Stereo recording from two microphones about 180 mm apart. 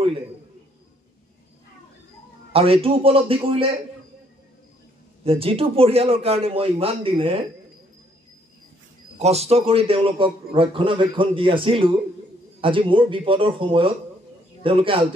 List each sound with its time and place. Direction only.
2.5 s a man's voice: 30° right (ahead or behind)
5.2 s a man's voice: 30° right (ahead or behind)
9.2 s a man's voice: 35° right (ahead or behind)